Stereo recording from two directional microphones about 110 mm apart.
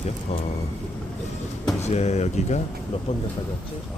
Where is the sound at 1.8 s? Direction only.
90° left.